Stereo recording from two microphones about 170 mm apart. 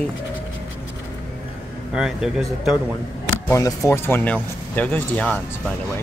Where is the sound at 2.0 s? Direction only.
5° right (ahead or behind).